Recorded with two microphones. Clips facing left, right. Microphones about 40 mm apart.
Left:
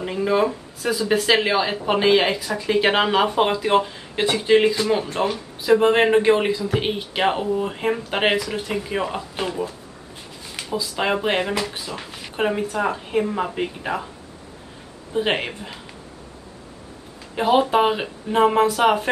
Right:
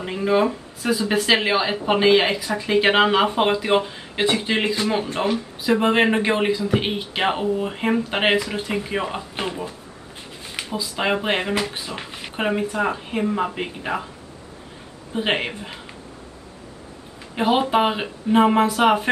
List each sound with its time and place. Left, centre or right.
0.0 s speech: centre
2.3 s speech: right
10.6 s a sound: right
11.0 s speech: centre; by 12.3 s right
12.4 s speech: centre
15.1 s speech: centre
17.4 s speech: centre